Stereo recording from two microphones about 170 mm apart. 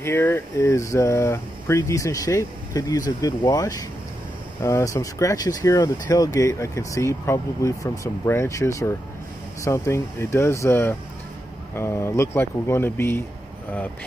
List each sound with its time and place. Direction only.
0.0 s speech: 15° left (ahead or behind)